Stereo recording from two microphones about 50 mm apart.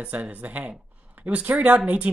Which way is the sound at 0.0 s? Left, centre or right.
Right.